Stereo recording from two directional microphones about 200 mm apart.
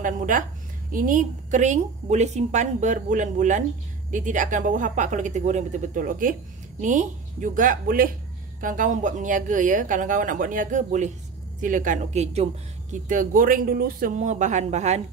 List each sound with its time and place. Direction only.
0.0 s a woman's voice: 40° right (ahead or behind)